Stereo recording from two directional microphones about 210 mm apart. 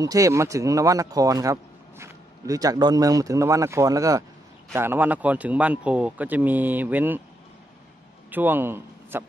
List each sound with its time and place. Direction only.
0.0 s speech: 15° right (ahead or behind)
8.3 s a man's voice: 10° right (ahead or behind)